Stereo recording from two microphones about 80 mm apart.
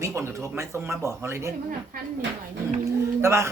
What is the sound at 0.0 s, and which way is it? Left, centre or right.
Speech, right.